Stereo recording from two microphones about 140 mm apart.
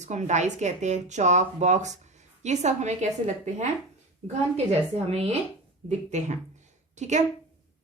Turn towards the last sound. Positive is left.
turn(degrees=-55)  # may be behind; listen again after turning